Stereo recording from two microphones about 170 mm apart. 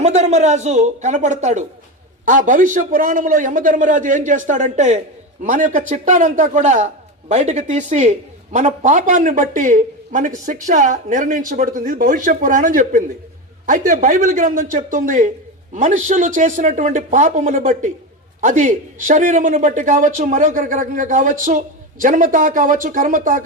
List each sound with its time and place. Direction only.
0.0 s speech: 40° right (ahead or behind)